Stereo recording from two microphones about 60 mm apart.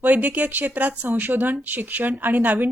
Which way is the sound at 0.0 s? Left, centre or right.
Right.